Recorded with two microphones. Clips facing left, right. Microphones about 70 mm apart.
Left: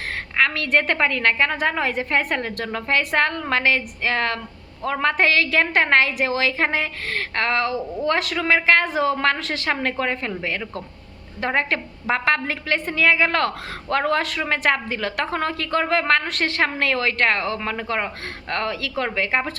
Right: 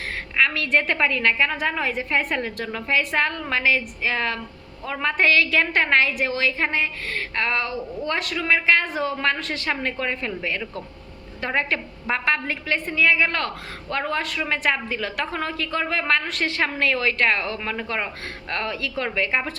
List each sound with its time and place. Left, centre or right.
0.3 s a woman's voice: left
8.4 s a woman's voice: left
9.1 s a woman's voice: left
9.6 s a woman's voice: left
17.6 s a man's voice: left